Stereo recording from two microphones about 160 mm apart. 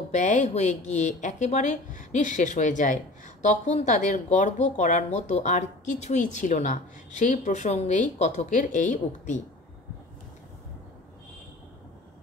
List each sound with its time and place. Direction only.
0.1 s a woman's voice: 50° left (ahead or behind)